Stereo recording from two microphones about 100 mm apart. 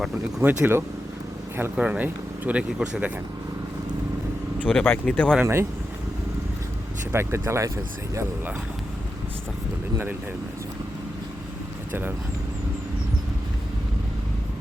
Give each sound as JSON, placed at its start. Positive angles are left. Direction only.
{"t": 0.4, "sound": "speech", "side_deg": -20}
{"t": 4.8, "sound": "speech", "side_deg": 15}
{"t": 5.4, "sound": "speech", "side_deg": -25}
{"t": 7.1, "sound": "speech", "side_deg": -25}
{"t": 11.9, "sound": "speech", "side_deg": -20}